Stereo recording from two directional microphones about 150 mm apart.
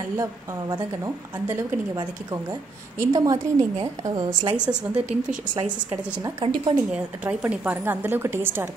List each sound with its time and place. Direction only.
0.2 s a woman's voice: 20° right (ahead or behind)
4.6 s a woman's voice: 5° right (ahead or behind)
6.4 s a woman's voice: 25° right (ahead or behind)
6.9 s a woman's voice: 10° right (ahead or behind)